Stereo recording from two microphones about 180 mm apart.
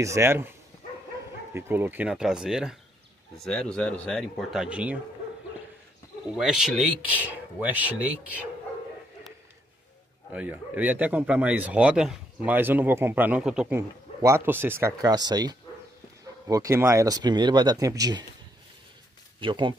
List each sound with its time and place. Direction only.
0.0 s speech: 15° right (ahead or behind)
6.3 s speech: 5° right (ahead or behind)
10.3 s speech: 10° right (ahead or behind)
19.4 s speech: 25° right (ahead or behind)